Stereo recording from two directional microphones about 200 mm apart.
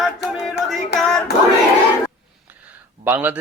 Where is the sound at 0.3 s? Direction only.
Centre (ahead or behind).